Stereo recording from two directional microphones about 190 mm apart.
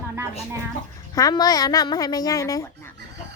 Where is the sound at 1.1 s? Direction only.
20° left (ahead or behind).